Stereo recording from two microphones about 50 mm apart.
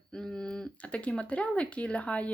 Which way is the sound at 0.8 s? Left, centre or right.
Left.